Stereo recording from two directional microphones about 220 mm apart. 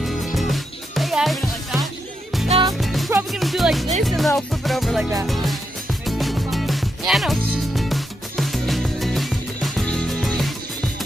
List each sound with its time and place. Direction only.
0.0 s music: centre (ahead or behind)
2.4 s music: 25° right (ahead or behind)
2.8 s music: centre (ahead or behind)